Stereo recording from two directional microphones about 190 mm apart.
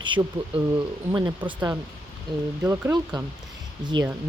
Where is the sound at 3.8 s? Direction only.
20° right (ahead or behind).